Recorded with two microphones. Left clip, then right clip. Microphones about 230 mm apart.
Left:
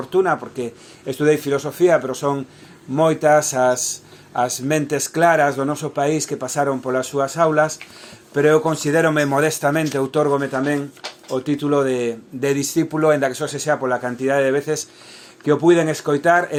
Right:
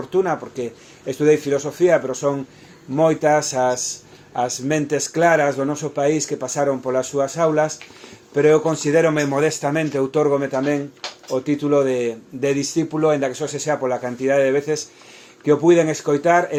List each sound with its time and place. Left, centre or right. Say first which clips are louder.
0.1 s speech: left 2 dB; left